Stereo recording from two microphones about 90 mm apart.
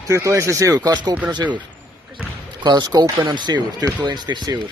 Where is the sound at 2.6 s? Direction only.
50° right (ahead or behind).